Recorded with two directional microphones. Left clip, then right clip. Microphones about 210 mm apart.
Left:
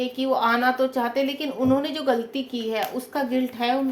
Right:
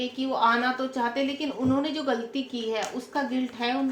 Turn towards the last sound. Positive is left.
turn(degrees=50)  # may be behind; listen again after turning